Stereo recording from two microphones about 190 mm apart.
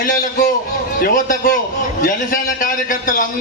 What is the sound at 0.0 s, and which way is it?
A man's voice, 45° left (ahead or behind).